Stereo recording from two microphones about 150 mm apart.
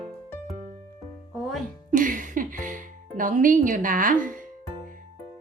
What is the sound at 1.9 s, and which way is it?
Music, 60° right (ahead or behind).